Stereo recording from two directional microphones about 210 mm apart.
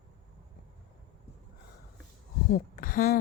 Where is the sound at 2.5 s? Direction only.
40° left (ahead or behind).